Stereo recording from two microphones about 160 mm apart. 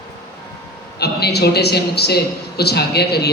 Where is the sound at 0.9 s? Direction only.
90° left.